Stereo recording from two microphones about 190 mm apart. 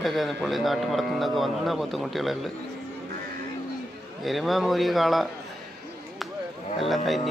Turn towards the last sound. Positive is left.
turn(degrees=0)  # may be behind; listen again after turning